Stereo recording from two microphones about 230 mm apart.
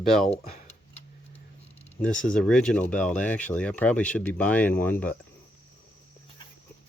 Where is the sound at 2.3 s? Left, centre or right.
Centre.